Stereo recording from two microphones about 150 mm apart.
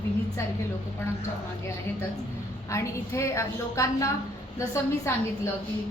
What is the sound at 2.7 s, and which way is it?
A woman's voice, 20° left (ahead or behind).